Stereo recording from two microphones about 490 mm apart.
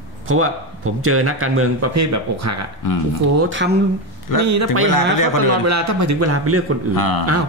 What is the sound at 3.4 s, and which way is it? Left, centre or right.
Speech, right.